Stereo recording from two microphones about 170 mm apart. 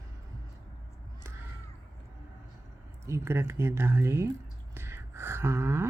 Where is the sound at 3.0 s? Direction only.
15° right (ahead or behind).